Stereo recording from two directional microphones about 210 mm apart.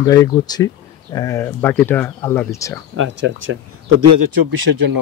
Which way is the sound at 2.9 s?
65° right (ahead or behind).